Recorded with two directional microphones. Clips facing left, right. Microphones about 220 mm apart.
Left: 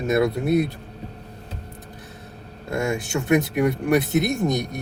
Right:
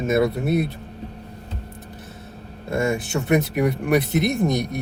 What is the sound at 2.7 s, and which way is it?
Speech, centre (ahead or behind).